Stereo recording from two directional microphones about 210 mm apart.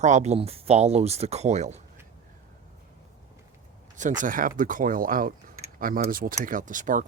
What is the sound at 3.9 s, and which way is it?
Speech, 35° right (ahead or behind).